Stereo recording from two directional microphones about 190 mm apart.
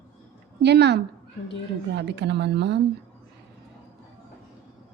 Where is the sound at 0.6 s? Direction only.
60° right (ahead or behind).